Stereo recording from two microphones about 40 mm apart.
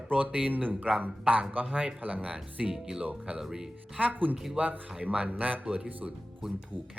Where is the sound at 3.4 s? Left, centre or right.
Centre.